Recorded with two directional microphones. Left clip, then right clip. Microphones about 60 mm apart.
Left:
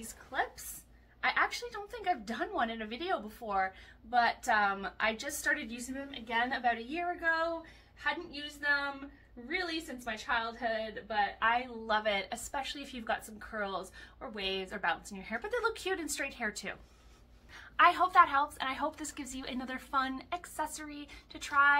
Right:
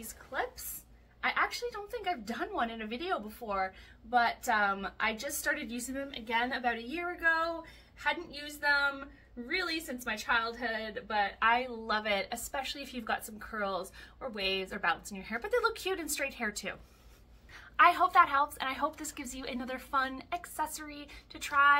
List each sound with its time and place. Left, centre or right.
0.0 s a woman's voice: right
1.2 s a woman's voice: right
5.6 s a woman's voice: right
6.5 s a woman's voice: right
7.2 s a woman's voice: right
8.0 s a woman's voice: right
8.4 s a woman's voice: right
17.7 s a woman's voice: right